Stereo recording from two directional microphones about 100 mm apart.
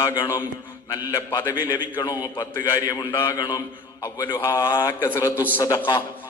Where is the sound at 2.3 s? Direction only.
25° left (ahead or behind).